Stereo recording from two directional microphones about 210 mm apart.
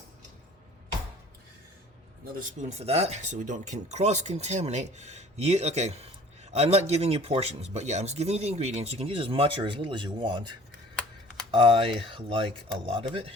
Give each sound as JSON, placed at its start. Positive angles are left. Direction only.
{"t": 2.2, "sound": "speech", "side_deg": -40}